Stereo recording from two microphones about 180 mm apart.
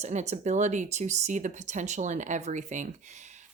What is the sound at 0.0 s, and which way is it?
A woman's voice, 40° right (ahead or behind).